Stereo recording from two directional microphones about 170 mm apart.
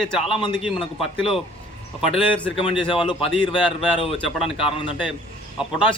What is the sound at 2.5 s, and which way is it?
Speech, 30° left (ahead or behind).